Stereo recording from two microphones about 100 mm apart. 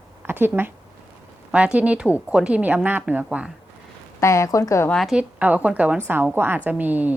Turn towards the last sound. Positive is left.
turn(degrees=-15)  # may be behind; listen again after turning